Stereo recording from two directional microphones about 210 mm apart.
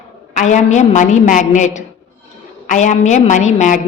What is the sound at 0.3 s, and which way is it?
A woman's voice, 35° left (ahead or behind).